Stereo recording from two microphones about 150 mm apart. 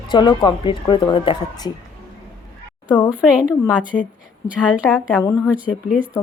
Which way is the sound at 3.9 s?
5° left (ahead or behind).